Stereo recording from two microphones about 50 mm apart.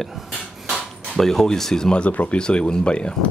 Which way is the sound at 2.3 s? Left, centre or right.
Centre.